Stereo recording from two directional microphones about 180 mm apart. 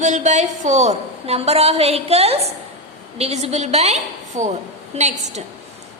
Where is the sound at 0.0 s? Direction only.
40° right (ahead or behind).